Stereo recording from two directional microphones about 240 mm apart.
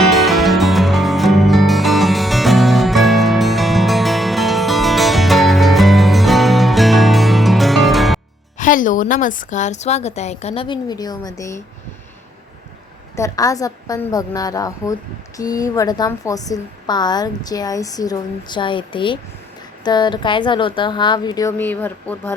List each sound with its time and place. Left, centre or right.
0.1 s music: centre
8.5 s a woman's voice: left; by 11.6 s centre
13.1 s a woman's voice: centre